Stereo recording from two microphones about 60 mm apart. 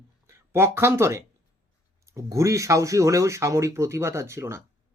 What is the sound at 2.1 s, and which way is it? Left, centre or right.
Speech, right.